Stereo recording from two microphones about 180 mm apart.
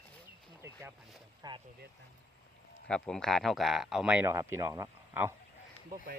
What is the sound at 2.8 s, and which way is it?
Speech, 5° left (ahead or behind).